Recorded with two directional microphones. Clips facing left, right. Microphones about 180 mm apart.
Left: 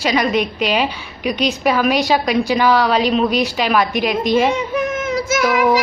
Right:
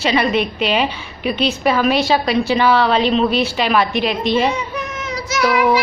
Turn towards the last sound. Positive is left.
turn(degrees=45)  # may be behind; listen again after turning